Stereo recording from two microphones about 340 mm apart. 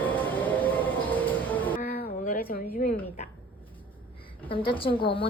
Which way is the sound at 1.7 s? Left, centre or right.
Left.